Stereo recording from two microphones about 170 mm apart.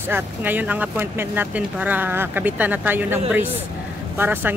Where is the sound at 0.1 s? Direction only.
10° right (ahead or behind).